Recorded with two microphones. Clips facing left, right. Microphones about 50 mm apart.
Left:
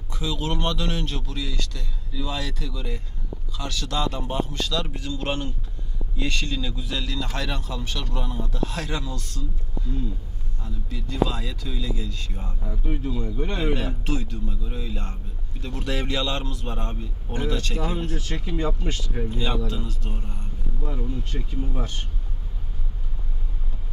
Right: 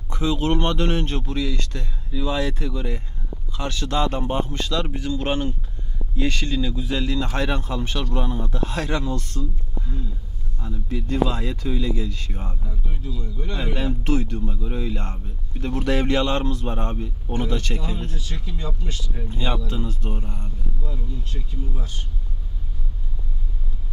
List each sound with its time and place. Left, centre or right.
0.1 s speech: right
12.6 s speech: left
14.0 s speech: right
16.6 s speech: right
17.7 s speech: left
19.3 s speech: right
20.8 s speech: left